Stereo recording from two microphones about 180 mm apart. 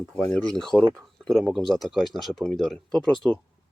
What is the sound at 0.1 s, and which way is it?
Speech, 5° left (ahead or behind).